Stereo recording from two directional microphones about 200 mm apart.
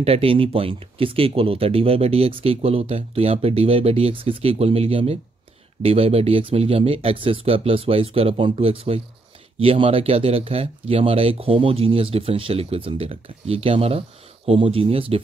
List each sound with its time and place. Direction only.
0.0 s speech: 30° right (ahead or behind)